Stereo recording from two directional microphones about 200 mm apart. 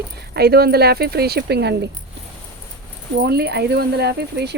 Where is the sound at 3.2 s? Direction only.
55° right (ahead or behind).